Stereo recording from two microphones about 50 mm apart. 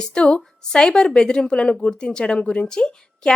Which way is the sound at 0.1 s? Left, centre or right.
Centre.